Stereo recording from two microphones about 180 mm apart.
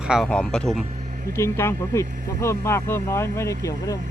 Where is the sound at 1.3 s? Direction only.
15° left (ahead or behind).